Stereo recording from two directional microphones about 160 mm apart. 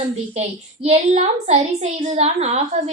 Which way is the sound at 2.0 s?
45° right (ahead or behind).